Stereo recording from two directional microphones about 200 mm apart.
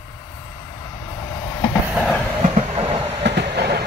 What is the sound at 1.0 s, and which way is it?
Train, 15° left (ahead or behind).